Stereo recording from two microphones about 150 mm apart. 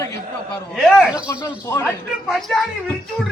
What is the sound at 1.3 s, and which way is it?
Speech, 20° left (ahead or behind).